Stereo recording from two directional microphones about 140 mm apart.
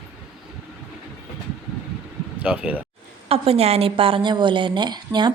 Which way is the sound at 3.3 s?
45° right (ahead or behind).